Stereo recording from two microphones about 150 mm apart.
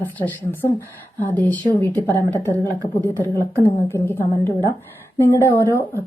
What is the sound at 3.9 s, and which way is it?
A woman's voice, 15° left (ahead or behind).